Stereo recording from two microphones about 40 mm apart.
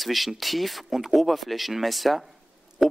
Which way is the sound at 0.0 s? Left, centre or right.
Centre.